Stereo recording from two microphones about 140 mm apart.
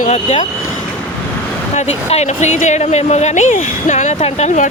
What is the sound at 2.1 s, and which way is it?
A woman's voice, 55° left (ahead or behind).